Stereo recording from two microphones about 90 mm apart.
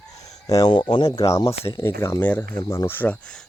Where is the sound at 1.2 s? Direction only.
35° left (ahead or behind).